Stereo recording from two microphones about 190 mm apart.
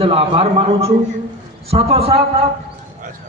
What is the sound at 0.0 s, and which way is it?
A man's voice, 30° right (ahead or behind).